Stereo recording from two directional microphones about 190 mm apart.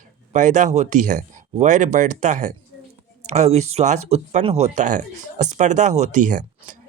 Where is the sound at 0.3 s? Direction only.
40° right (ahead or behind).